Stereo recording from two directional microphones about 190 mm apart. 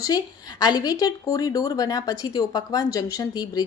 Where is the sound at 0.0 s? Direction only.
20° left (ahead or behind).